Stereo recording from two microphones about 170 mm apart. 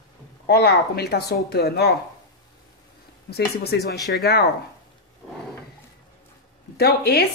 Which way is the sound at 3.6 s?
70° left (ahead or behind).